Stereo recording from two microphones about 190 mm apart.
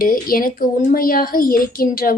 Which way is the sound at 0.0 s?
50° left (ahead or behind).